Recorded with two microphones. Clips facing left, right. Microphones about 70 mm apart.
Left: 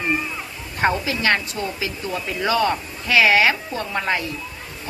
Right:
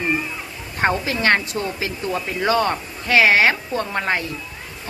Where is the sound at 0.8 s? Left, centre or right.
Right.